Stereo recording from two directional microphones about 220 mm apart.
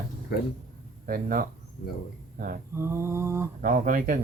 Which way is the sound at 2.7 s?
10° right (ahead or behind).